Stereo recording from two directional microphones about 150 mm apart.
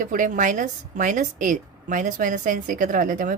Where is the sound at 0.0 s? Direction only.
60° right (ahead or behind).